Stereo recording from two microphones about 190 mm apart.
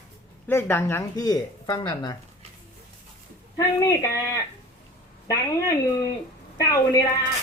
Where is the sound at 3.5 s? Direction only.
15° left (ahead or behind).